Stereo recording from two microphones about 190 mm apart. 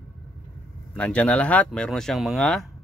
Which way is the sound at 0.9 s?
5° left (ahead or behind).